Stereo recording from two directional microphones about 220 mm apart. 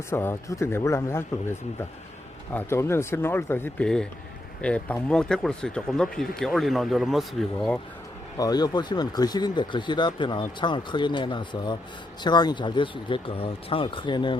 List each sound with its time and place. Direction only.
0.1 s speech: 10° left (ahead or behind)
8.4 s speech: 15° left (ahead or behind)